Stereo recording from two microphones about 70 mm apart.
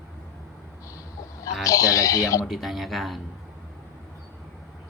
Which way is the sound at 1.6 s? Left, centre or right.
Left.